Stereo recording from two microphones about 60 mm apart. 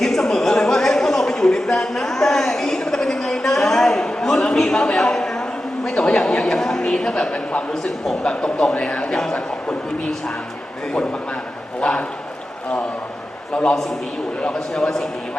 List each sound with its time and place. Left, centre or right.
0.0 s a sound: centre
5.8 s a woman's voice: centre
7.7 s a man's voice: centre
11.8 s a man's voice: centre
14.4 s a woman's voice: centre